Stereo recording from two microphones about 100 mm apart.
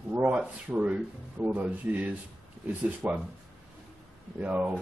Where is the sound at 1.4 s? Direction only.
15° right (ahead or behind).